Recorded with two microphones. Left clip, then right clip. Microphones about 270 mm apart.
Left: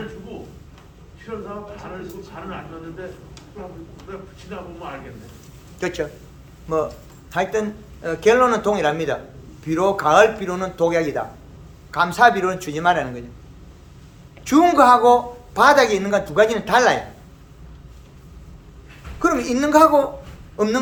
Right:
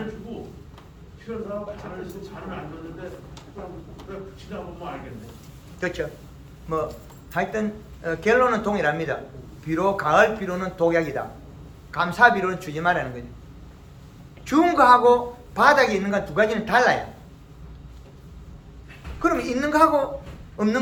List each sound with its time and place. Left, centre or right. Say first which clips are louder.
4.5 s speech: left 2 dB; centre
5.8 s a man's voice: left 3 dB; left
7.3 s a man's voice: left 4 dB; left
14.4 s a man's voice: left 3 dB; left
19.2 s a man's voice: left 3 dB; left